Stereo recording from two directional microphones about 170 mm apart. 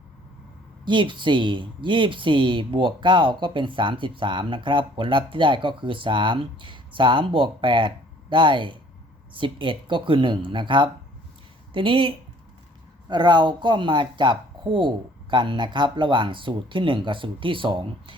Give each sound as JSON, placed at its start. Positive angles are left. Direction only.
{"t": 0.9, "sound": "speech", "side_deg": -30}